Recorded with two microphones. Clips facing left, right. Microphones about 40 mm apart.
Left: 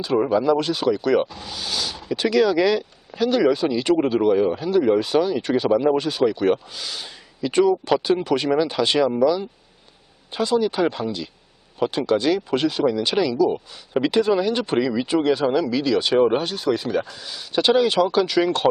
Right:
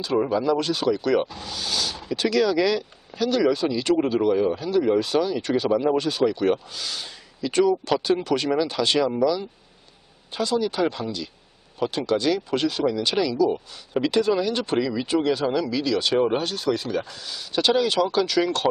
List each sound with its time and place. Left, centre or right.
0.0 s speech: centre